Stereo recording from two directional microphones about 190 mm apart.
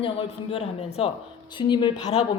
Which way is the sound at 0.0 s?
30° left (ahead or behind).